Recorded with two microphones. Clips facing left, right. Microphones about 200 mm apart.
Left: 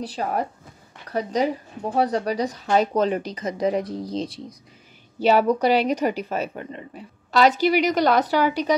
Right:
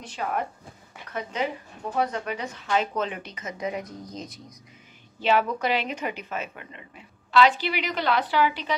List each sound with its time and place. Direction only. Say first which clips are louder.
0.0 s a woman's voice: left 4 dB; 35° left (ahead or behind)